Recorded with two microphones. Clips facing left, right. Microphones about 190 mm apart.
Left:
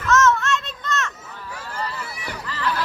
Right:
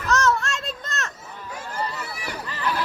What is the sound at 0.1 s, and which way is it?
Children playing, 35° right (ahead or behind).